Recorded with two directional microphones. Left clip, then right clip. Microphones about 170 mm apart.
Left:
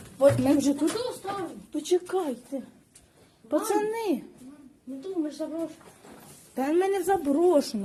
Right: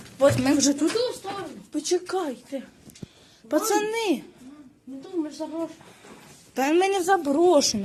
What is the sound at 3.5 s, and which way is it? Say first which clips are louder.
Speech: right 3 dB; 5° right (ahead or behind).